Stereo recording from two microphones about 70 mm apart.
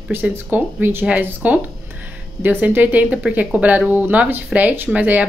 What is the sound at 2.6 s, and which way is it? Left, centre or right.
Speech, right.